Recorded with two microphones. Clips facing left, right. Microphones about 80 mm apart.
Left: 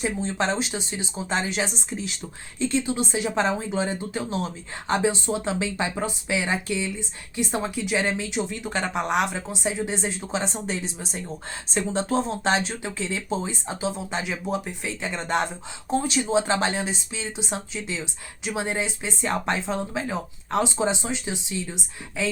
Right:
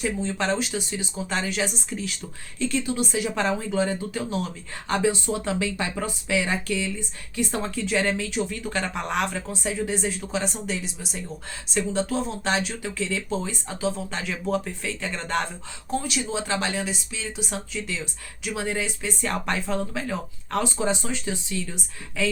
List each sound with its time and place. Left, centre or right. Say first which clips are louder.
0.0 s speech: left 1 dB; left